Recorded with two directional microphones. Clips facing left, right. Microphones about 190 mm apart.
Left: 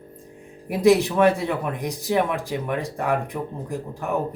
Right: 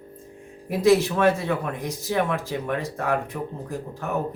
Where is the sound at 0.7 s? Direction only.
15° left (ahead or behind).